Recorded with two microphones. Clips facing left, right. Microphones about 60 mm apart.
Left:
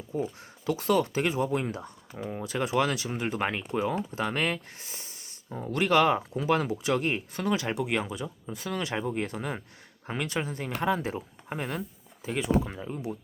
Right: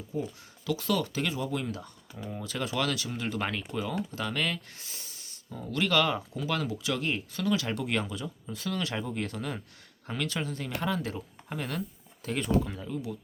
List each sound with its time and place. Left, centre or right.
0.1 s speech: left
12.2 s speech: centre
12.6 s speech: left